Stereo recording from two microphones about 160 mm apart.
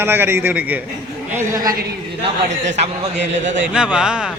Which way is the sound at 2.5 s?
45° right (ahead or behind).